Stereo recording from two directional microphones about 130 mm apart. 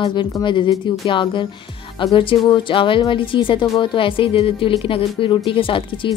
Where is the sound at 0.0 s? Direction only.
35° left (ahead or behind).